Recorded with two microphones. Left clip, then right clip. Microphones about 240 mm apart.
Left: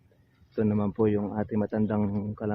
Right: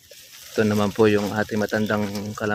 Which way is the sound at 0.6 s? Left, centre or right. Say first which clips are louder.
Right 8 dB; right.